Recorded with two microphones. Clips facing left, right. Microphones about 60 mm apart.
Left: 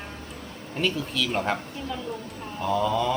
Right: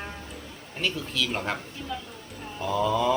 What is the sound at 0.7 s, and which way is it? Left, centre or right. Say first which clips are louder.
Speech: left 3 dB; centre.